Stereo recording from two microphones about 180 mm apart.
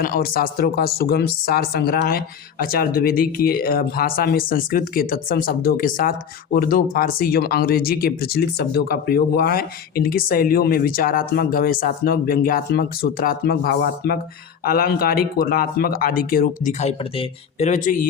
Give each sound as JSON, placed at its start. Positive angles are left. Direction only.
{"t": 0.0, "sound": "speech", "side_deg": 55}
{"t": 16.8, "sound": "speech", "side_deg": 40}